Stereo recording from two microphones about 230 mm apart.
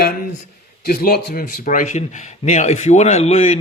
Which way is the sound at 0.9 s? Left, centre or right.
Left.